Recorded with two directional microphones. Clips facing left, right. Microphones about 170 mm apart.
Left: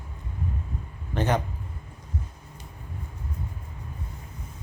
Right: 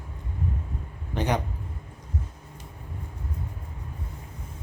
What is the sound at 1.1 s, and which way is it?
Speech, 15° right (ahead or behind).